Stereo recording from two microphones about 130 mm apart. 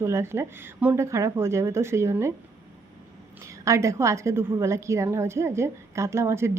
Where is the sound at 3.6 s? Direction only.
25° right (ahead or behind).